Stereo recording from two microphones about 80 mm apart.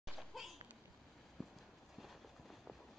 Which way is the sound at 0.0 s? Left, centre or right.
Centre.